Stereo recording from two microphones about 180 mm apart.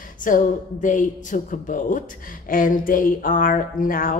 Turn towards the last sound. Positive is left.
turn(degrees=50)  # may be behind; listen again after turning